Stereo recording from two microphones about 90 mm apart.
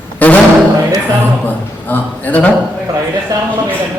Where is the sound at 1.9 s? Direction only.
20° left (ahead or behind).